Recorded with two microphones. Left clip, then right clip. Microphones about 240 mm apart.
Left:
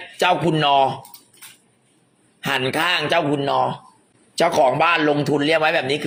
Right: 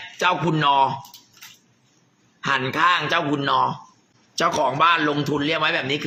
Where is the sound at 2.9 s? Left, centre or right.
Right.